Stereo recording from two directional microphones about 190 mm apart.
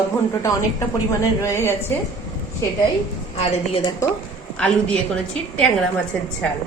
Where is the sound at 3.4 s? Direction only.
30° left (ahead or behind).